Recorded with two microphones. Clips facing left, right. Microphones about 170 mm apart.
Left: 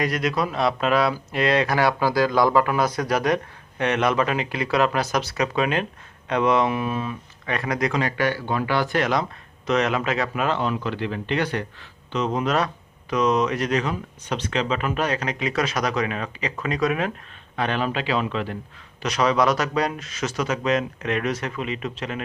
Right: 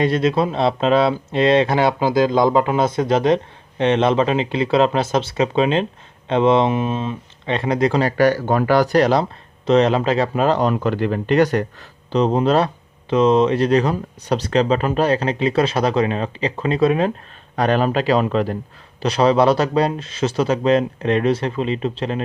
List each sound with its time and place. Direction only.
0.0 s speech: 25° right (ahead or behind)
17.6 s speech: 40° right (ahead or behind)
19.0 s speech: 30° right (ahead or behind)